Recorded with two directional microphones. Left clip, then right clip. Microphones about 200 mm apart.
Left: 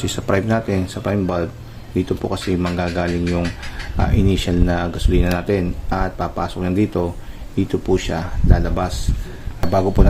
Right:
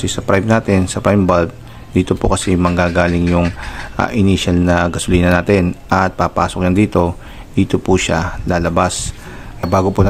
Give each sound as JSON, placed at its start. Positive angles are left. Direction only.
{"t": 0.0, "sound": "speech", "side_deg": -20}
{"t": 9.7, "sound": "speech", "side_deg": -20}